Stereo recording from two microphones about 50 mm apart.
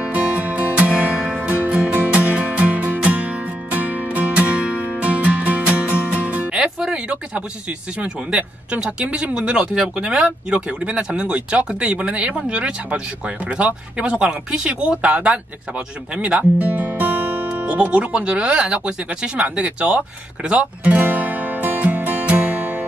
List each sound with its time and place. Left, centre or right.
0.0 s music: right
6.5 s music: centre
8.0 s speech: right
20.4 s music: right